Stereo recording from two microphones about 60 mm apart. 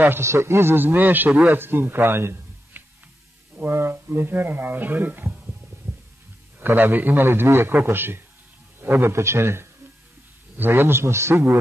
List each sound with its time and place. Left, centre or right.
0.2 s a man's voice: right
6.6 s a man's voice: right